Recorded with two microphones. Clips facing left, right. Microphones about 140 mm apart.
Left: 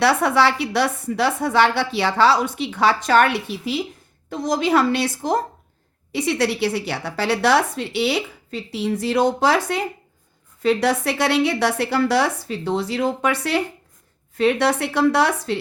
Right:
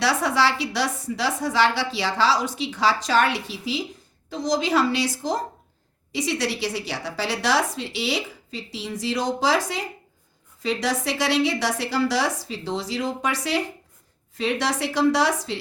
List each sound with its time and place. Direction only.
0.0 s a woman's voice: 55° left (ahead or behind)